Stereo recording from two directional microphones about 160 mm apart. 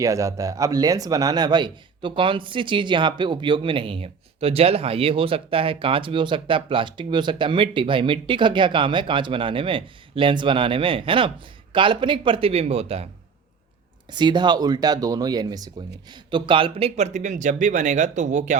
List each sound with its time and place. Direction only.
0.0 s speech: 20° right (ahead or behind); by 13.1 s 40° right (ahead or behind)
14.1 s speech: 30° right (ahead or behind); by 18.5 s 50° right (ahead or behind)